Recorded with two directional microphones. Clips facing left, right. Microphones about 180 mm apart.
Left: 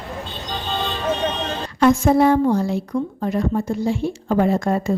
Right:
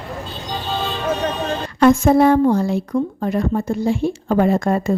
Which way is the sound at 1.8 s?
55° right (ahead or behind).